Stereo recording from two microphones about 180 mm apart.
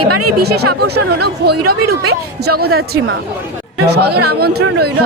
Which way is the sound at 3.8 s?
65° right (ahead or behind).